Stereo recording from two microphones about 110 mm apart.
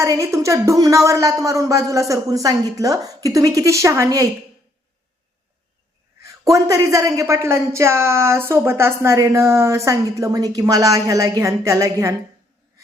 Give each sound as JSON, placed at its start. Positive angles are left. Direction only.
{"t": 0.0, "sound": "a woman's voice", "side_deg": -30}
{"t": 6.2, "sound": "a woman's voice", "side_deg": -30}